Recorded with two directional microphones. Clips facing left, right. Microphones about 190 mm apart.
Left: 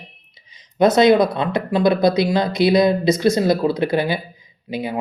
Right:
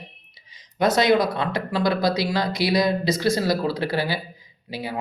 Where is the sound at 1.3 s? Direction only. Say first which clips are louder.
Left 5 dB; 20° left (ahead or behind).